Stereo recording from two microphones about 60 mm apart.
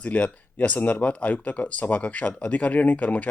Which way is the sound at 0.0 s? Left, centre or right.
Left.